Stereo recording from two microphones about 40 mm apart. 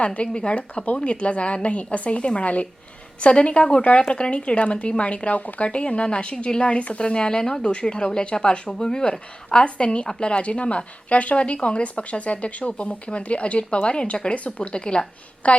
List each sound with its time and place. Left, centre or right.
0.0 s a woman's voice: left